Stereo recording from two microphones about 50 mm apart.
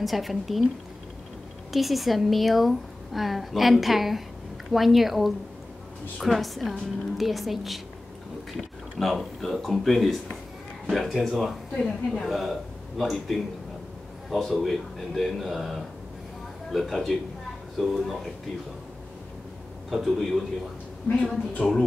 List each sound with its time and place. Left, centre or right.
0.0 s a woman's voice: centre
1.7 s a woman's voice: centre
19.9 s a woman's voice: centre
21.0 s a woman's voice: left
21.6 s speech: centre